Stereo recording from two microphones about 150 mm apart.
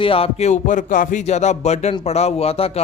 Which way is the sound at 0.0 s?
40° left (ahead or behind).